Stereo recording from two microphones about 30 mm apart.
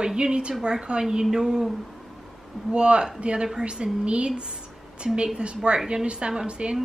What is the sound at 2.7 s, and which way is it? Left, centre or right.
A woman's voice, right.